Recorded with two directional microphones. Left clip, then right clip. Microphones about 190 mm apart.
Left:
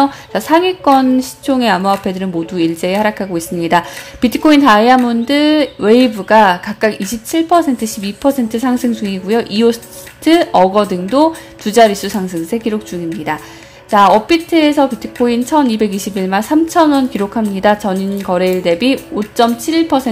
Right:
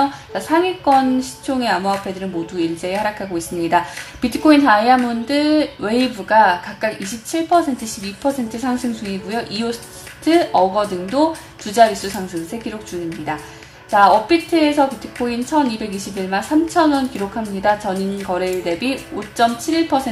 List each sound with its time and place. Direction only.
0.0 s a woman's voice: 40° left (ahead or behind)
13.8 s a woman's voice: 35° left (ahead or behind)